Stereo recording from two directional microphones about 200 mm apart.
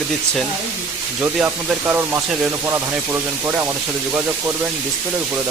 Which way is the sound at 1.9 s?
10° right (ahead or behind).